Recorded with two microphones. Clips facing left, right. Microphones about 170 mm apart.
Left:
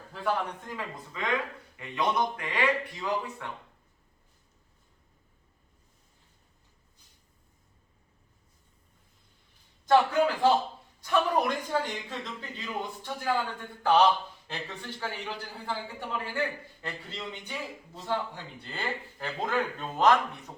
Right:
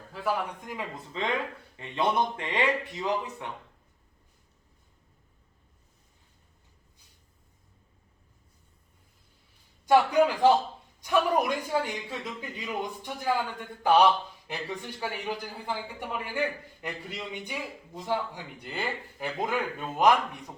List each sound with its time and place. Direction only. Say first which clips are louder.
0.1 s a man's voice: even; 5° right (ahead or behind)
0.7 s speech: right 2 dB; 20° right (ahead or behind)
9.8 s a man's voice: right 2 dB; 10° right (ahead or behind)
14.4 s a man's voice: right 3 dB; 15° right (ahead or behind)